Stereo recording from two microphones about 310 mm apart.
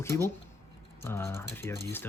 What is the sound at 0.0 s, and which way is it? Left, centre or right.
Speech, centre.